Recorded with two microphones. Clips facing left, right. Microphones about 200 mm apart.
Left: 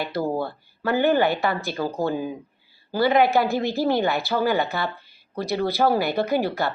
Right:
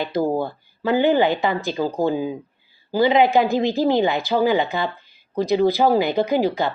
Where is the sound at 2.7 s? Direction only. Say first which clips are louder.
Right 3 dB; 15° right (ahead or behind).